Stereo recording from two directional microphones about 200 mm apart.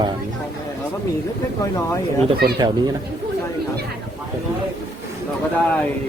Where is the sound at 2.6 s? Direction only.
20° right (ahead or behind).